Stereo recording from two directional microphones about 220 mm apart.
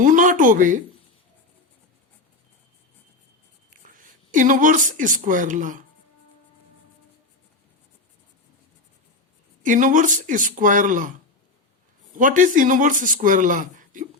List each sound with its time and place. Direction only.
0.0 s a sound: 35° right (ahead or behind)
3.8 s a woman's voice: 35° right (ahead or behind)
9.6 s speech: 35° right (ahead or behind)
12.1 s speech: 35° right (ahead or behind)